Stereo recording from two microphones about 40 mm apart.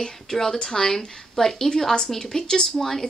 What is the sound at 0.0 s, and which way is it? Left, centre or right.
Speech, centre.